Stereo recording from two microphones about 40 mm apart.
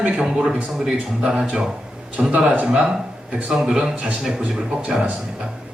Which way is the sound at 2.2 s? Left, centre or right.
Right.